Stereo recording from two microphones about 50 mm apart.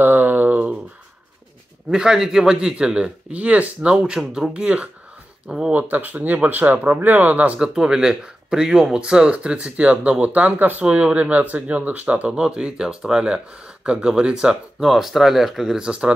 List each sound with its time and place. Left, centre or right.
0.0 s a sound: right
1.9 s a man's voice: centre; by 3.9 s right
3.9 s a man's voice: centre
5.7 s speech: right
7.5 s speech: centre
12.3 s a man's voice: centre
15.8 s speech: right